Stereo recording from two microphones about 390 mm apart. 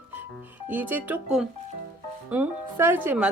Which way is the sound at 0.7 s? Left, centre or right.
Centre.